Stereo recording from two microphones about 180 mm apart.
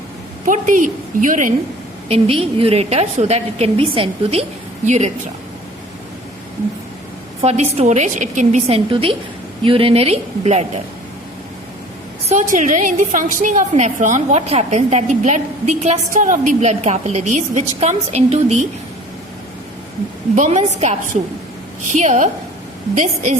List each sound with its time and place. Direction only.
0.4 s a woman's voice: 45° right (ahead or behind)
2.0 s a woman's voice: 35° right (ahead or behind)
7.4 s a woman's voice: 35° right (ahead or behind)
12.3 s a woman's voice: 40° right (ahead or behind)
20.3 s a woman's voice: 40° right (ahead or behind)
21.9 s a woman's voice: 40° right (ahead or behind)